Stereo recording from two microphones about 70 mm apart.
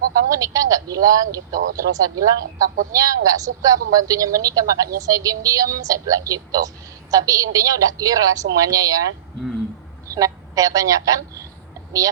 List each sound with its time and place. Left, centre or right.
0.1 s speech: right
10.2 s speech: right